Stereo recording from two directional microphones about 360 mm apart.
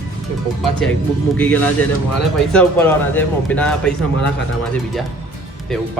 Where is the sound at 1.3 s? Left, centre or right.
Centre.